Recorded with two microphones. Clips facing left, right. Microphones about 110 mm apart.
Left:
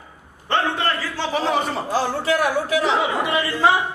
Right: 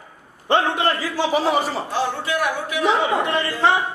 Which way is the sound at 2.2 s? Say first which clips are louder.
Left 3 dB; 35° left (ahead or behind).